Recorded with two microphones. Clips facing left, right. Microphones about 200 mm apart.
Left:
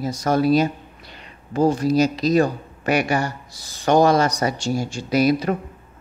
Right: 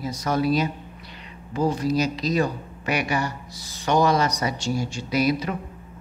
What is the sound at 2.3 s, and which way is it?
Speech, 50° left (ahead or behind).